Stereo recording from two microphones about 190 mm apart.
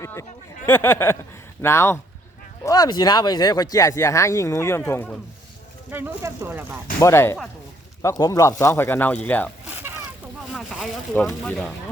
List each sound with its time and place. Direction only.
0.0 s speech: 15° left (ahead or behind)
5.9 s speech: 10° right (ahead or behind)
7.0 s speech: 15° left (ahead or behind)
9.6 s a sound: 10° right (ahead or behind)
10.5 s speech: centre (ahead or behind)